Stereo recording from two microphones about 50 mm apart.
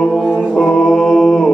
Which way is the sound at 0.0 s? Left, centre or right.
Centre.